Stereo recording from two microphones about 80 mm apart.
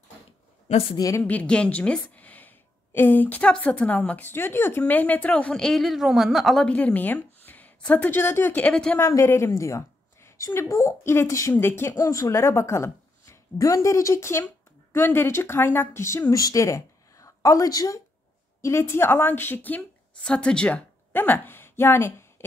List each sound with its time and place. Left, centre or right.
1.2 s a woman's voice: centre
5.5 s a woman's voice: centre
6.6 s a woman's voice: centre
9.0 s a woman's voice: left
11.5 s a woman's voice: left
18.6 s a woman's voice: left